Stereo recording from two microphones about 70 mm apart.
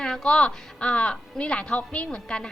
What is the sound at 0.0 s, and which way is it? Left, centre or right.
A woman's voice, centre.